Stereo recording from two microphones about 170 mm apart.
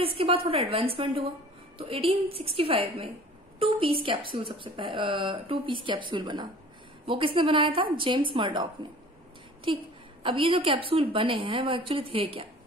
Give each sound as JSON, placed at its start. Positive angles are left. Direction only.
{"t": 0.0, "sound": "a woman's voice", "side_deg": -30}
{"t": 9.7, "sound": "a woman's voice", "side_deg": -30}